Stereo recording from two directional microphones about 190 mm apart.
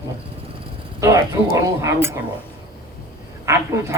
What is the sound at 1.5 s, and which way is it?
Speech, 15° right (ahead or behind).